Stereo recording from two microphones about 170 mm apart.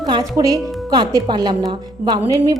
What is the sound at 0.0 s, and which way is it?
Speech, 25° right (ahead or behind).